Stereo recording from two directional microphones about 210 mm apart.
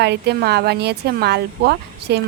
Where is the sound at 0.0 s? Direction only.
55° right (ahead or behind).